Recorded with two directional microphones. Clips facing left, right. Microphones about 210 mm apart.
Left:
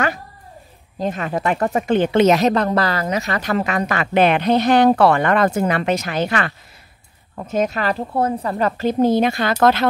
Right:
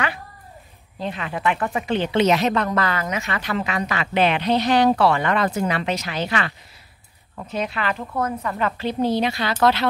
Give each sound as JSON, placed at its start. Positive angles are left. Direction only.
{"t": 0.9, "sound": "speech", "side_deg": 45}